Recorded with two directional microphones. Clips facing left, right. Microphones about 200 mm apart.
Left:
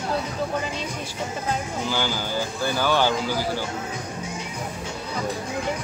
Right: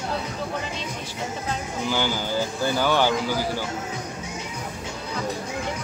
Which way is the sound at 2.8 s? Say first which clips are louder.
Even; 15° right (ahead or behind).